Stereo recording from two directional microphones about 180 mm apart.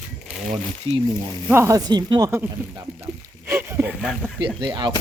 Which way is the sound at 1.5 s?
15° right (ahead or behind).